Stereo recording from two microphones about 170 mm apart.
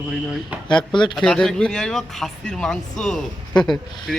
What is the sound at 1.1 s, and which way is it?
Speech, centre (ahead or behind).